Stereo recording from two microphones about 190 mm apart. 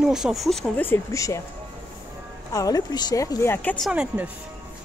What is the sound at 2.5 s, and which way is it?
Speech, 20° left (ahead or behind).